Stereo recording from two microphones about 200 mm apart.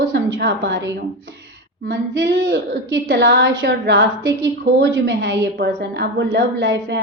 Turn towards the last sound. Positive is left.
turn(degrees=-65)  # may be behind; listen again after turning